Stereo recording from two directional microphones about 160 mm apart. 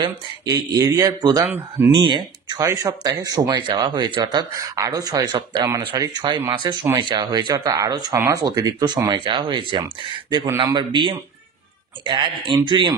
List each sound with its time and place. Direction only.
0.0 s speech: 25° right (ahead or behind)
1.4 s speech: 15° right (ahead or behind)
1.9 s a man's voice: 30° right (ahead or behind)